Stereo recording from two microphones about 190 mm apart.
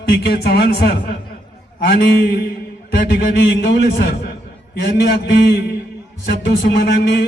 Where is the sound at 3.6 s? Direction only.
60° left (ahead or behind).